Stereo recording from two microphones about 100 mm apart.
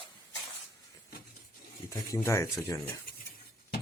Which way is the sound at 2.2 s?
30° left (ahead or behind).